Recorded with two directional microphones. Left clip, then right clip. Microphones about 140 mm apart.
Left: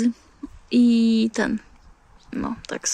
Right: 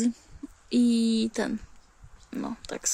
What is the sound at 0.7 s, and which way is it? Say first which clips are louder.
Speech: left 6 dB; centre (ahead or behind).